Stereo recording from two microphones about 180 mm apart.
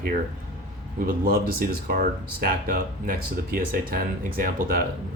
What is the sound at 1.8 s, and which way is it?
Speech, 55° right (ahead or behind).